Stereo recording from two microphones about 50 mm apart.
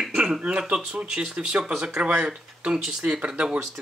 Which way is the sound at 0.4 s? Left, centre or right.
Right.